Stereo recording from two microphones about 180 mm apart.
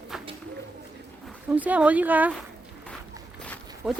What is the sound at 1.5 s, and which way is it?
Speech, 10° right (ahead or behind).